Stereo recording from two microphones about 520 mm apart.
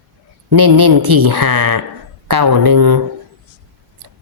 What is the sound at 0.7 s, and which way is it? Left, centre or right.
Speech, right.